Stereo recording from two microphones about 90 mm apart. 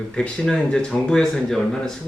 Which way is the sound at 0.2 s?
10° left (ahead or behind).